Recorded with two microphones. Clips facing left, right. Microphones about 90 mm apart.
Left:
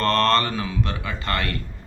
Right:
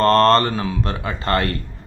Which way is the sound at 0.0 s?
35° right (ahead or behind).